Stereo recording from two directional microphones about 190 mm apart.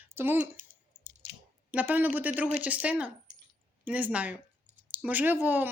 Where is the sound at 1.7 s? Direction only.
10° right (ahead or behind).